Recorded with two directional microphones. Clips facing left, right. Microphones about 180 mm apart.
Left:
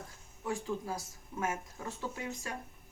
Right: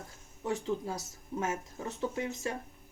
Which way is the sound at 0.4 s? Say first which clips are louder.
Right 3 dB; 25° right (ahead or behind).